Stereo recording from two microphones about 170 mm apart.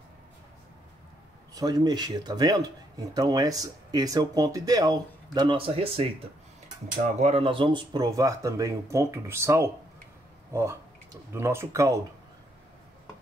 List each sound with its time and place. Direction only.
1.5 s speech: 20° right (ahead or behind)
7.0 s speech: 45° right (ahead or behind); by 12.0 s 20° right (ahead or behind)